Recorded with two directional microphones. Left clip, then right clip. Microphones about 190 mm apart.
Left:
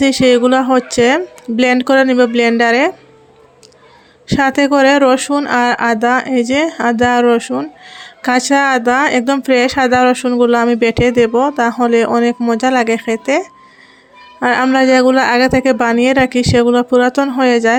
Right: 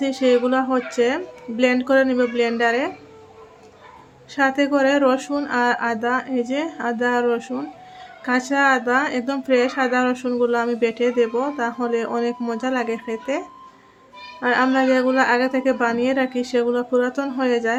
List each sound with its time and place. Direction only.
0.0 s speech: 55° left (ahead or behind)
4.3 s speech: 55° left (ahead or behind)